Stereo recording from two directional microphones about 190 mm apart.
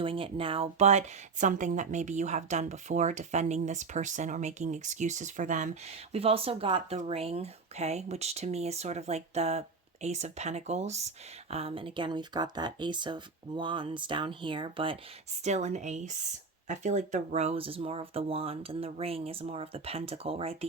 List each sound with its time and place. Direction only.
0.0 s speech: 30° right (ahead or behind)
15.4 s speech: 40° right (ahead or behind)